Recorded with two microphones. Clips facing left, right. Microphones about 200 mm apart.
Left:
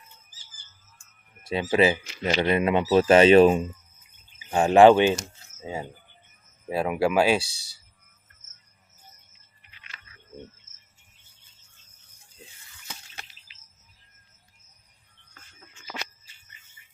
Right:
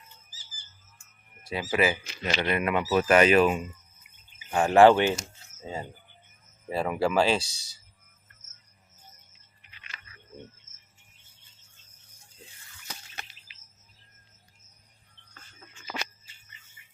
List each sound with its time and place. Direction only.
1.7 s speech: 25° left (ahead or behind)
4.5 s speech: 20° left (ahead or behind)